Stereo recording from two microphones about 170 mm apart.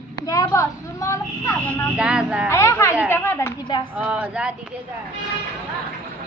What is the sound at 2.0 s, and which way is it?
Speech, 5° right (ahead or behind).